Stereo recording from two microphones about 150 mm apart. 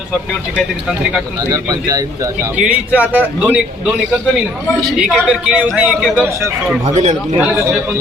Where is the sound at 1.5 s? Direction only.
25° right (ahead or behind).